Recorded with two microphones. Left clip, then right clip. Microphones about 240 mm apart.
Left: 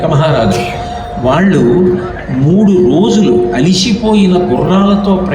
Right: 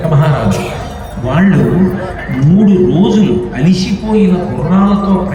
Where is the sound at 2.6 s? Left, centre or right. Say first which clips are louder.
Left 2 dB; left.